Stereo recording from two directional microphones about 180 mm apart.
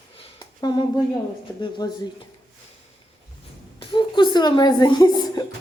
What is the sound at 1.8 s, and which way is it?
Speech, 20° left (ahead or behind).